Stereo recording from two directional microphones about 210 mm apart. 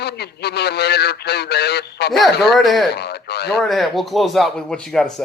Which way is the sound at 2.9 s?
50° left (ahead or behind).